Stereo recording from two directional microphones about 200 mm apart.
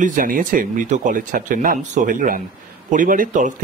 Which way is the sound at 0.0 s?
45° right (ahead or behind).